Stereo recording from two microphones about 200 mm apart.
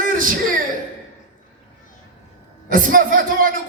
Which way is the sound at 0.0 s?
45° right (ahead or behind).